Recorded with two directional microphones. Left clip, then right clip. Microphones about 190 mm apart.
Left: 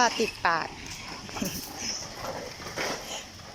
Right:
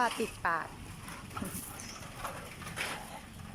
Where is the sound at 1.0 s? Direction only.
30° left (ahead or behind).